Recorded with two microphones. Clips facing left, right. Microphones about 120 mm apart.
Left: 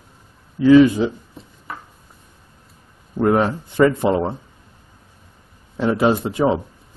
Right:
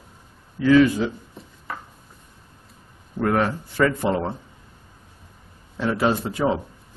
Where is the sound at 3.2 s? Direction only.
20° left (ahead or behind).